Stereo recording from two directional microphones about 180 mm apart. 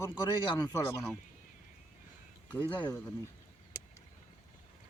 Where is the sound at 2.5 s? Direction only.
10° left (ahead or behind).